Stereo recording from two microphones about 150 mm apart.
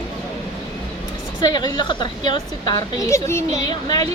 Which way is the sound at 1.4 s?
25° left (ahead or behind).